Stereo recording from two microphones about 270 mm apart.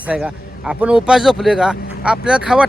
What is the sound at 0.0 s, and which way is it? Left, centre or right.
Speech, centre.